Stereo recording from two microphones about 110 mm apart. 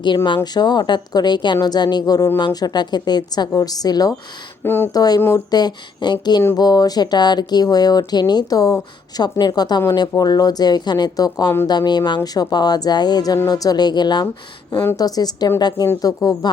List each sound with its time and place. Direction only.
0.4 s speech: 40° left (ahead or behind)
4.6 s speech: 20° left (ahead or behind)
4.9 s speech: 35° left (ahead or behind)